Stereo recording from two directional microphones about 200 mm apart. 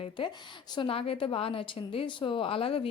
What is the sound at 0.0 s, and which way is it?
Speech, 25° left (ahead or behind).